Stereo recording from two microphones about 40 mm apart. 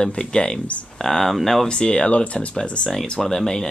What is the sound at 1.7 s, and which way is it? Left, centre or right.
Speech, left.